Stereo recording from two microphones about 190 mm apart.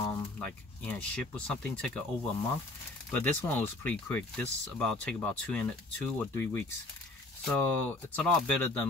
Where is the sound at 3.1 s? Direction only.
10° left (ahead or behind).